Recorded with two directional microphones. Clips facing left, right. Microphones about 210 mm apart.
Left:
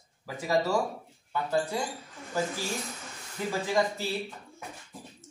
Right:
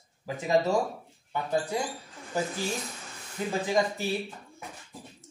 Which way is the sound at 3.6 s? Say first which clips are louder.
Right 1 dB; 20° right (ahead or behind).